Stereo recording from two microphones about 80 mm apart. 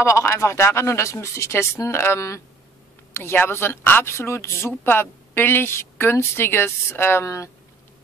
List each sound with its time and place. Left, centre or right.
0.0 s a woman's voice: left